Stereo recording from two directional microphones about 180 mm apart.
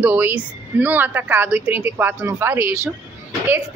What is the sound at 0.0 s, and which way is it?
A woman's voice, 10° right (ahead or behind).